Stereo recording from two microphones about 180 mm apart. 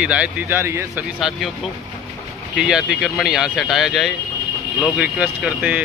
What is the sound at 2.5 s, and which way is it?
Speech, 5° right (ahead or behind).